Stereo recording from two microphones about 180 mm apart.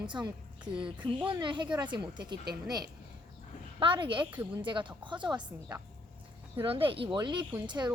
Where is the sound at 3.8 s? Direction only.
30° right (ahead or behind).